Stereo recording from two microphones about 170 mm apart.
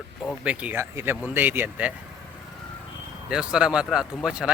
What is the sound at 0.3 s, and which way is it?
Speech, 5° right (ahead or behind).